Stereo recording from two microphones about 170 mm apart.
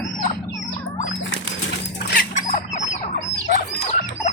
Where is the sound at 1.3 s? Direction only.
90° left.